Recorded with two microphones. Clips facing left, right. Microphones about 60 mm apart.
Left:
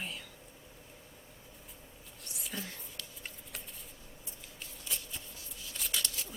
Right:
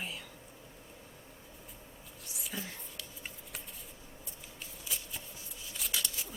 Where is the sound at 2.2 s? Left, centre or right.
Centre.